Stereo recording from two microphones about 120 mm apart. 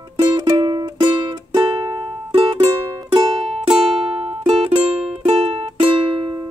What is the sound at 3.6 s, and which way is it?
Music, 50° right (ahead or behind).